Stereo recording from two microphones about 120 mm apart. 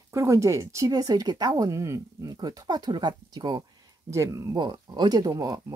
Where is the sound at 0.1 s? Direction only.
25° right (ahead or behind).